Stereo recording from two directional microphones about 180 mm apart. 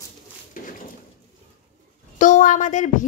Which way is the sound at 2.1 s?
45° left (ahead or behind).